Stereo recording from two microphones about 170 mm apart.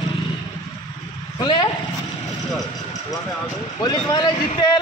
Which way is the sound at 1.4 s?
25° left (ahead or behind).